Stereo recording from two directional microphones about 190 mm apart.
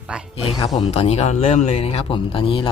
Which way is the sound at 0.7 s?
30° left (ahead or behind).